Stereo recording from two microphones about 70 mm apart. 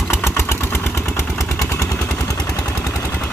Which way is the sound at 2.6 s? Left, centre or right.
Left.